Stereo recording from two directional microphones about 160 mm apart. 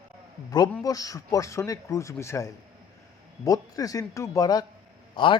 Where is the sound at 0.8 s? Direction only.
20° left (ahead or behind).